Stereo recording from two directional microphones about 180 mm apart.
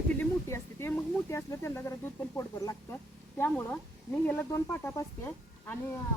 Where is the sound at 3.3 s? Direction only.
10° left (ahead or behind).